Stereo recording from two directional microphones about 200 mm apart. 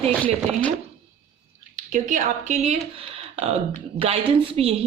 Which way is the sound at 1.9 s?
40° right (ahead or behind).